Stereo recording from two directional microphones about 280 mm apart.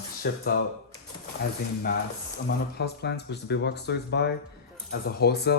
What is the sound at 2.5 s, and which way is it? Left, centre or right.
Speech, left.